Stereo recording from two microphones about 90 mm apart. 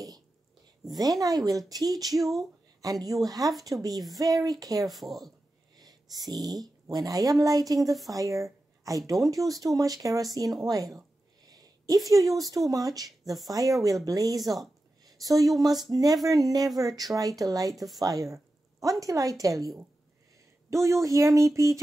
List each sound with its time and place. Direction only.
0.8 s speech: 45° right (ahead or behind)
4.8 s speech: centre (ahead or behind)
5.8 s speech: 45° right (ahead or behind)
11.4 s a sound: 45° right (ahead or behind)
12.1 s a woman's voice: 40° right (ahead or behind)
20.8 s speech: 35° right (ahead or behind)